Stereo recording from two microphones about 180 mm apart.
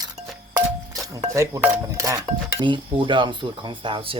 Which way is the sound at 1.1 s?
15° right (ahead or behind).